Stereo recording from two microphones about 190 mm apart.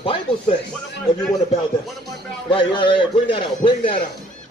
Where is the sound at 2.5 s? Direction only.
25° left (ahead or behind).